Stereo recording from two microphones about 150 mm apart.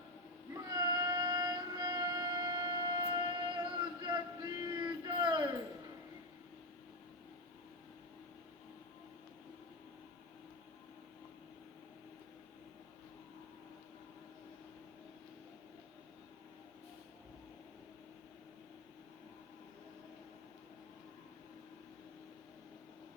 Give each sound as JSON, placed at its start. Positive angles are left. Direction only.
{"t": 0.5, "sound": "music", "side_deg": -25}